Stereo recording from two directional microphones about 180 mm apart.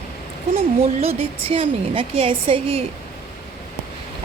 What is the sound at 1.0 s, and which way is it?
A woman's voice, 30° right (ahead or behind).